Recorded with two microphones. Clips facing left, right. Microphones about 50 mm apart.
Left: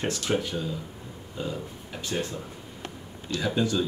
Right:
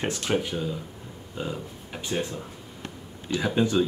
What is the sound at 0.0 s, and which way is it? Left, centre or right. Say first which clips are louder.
Speech: right 1 dB; right.